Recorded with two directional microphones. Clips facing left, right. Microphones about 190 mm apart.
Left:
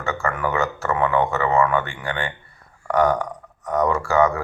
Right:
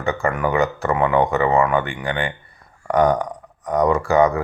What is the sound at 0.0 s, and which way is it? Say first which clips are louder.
Speech: right 3 dB; 15° right (ahead or behind).